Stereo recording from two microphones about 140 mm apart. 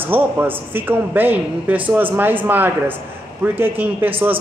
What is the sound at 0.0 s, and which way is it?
Speech, 15° right (ahead or behind).